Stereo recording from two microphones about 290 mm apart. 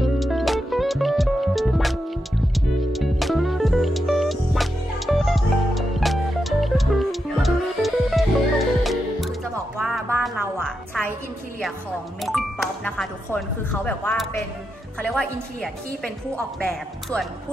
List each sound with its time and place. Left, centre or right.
0.0 s music: centre
12.2 s music: centre
13.8 s a woman's voice: centre